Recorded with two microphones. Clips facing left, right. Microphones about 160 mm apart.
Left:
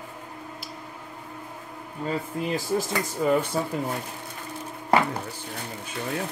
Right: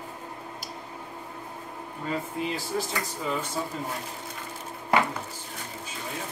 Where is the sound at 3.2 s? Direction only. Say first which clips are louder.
Left 10 dB; 50° left (ahead or behind).